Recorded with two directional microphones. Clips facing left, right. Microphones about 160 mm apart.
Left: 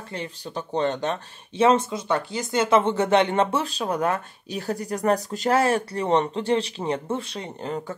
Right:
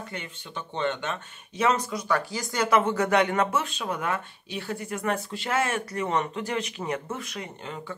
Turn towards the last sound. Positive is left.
turn(degrees=40)  # may be behind; listen again after turning